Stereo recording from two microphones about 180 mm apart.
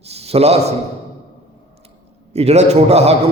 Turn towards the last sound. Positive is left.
turn(degrees=-35)  # may be behind; listen again after turning